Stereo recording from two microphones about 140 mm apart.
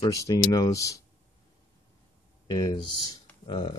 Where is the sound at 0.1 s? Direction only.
25° left (ahead or behind).